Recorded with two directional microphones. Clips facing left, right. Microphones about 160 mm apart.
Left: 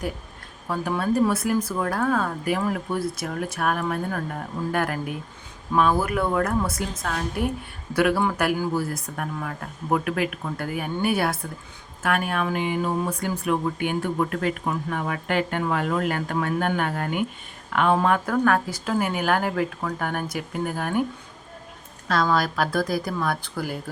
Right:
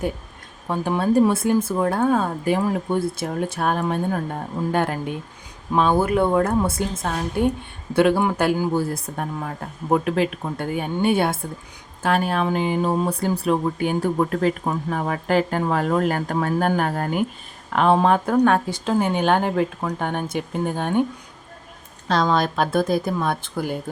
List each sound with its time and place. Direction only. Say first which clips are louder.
0.7 s speech: right 4 dB; 25° right (ahead or behind)
22.1 s speech: right 2 dB; 25° right (ahead or behind)